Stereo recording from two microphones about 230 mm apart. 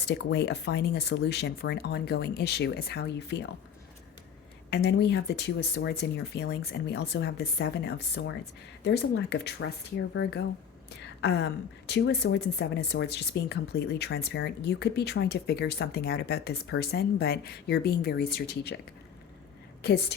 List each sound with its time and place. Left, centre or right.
0.0 s speech: left
4.7 s speech: left
19.8 s speech: left